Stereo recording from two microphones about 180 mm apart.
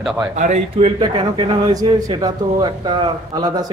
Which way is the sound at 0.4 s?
35° right (ahead or behind).